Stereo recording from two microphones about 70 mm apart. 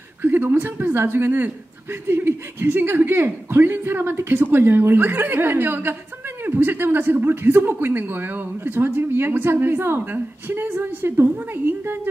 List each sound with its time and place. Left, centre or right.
0.2 s a woman's voice: right